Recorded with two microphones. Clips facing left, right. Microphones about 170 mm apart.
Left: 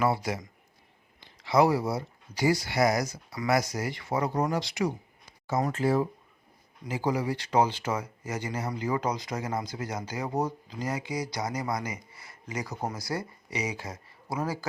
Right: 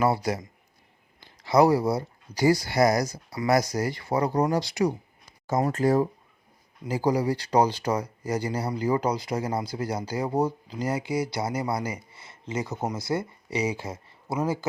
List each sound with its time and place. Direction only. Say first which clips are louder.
0.0 s speech: right 3 dB; 40° right (ahead or behind)
1.5 s speech: right 4 dB; 40° right (ahead or behind)